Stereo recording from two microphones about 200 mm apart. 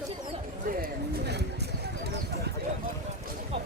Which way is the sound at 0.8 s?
55° right (ahead or behind).